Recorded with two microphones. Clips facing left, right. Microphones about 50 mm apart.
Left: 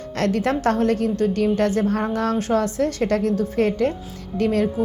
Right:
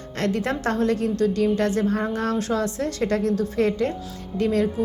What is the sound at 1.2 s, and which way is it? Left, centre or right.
A woman's voice, left.